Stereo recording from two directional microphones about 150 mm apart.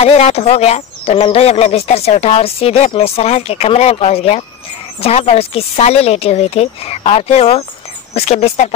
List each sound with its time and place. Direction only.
0.0 s speech: 40° left (ahead or behind)